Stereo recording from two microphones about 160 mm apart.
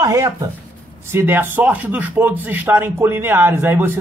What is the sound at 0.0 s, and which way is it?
Speech, 20° right (ahead or behind).